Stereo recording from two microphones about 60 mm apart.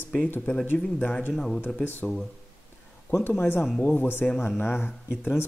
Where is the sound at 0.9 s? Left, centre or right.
Centre.